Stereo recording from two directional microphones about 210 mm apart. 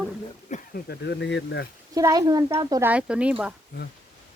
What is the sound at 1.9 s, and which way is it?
Speech, 15° right (ahead or behind).